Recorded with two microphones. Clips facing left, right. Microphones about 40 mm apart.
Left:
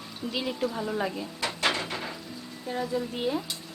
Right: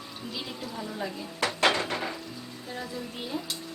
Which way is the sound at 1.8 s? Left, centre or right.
Right.